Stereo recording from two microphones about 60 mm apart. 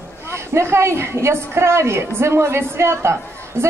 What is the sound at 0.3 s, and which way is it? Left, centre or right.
A woman's voice, right.